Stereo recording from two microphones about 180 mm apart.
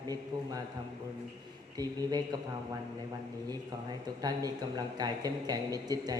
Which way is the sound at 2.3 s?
25° right (ahead or behind).